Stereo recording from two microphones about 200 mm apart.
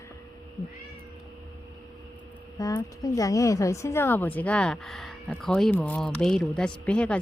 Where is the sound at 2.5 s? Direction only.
15° left (ahead or behind).